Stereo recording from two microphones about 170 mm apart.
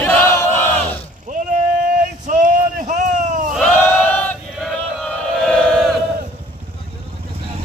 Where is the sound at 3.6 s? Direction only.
10° left (ahead or behind).